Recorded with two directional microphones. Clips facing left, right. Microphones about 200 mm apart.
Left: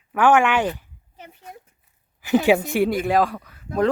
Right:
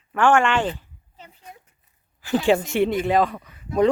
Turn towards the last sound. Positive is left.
turn(degrees=0)  # may be behind; listen again after turning